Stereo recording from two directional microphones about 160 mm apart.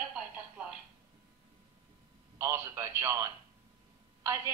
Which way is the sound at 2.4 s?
20° right (ahead or behind).